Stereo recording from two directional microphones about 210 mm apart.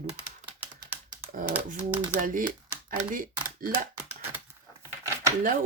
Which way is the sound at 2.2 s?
40° right (ahead or behind).